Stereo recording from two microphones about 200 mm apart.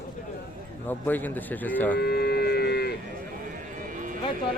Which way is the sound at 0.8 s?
10° left (ahead or behind).